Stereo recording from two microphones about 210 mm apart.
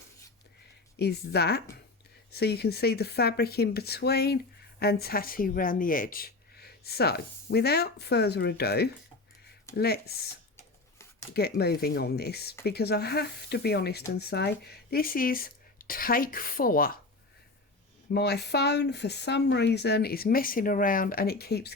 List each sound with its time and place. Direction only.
0.9 s speech: 50° left (ahead or behind)
10.6 s scissors: 15° left (ahead or behind)
11.3 s speech: 50° left (ahead or behind)
18.1 s speech: 50° left (ahead or behind)